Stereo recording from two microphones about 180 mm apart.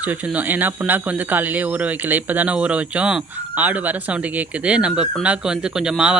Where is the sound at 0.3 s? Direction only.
10° right (ahead or behind).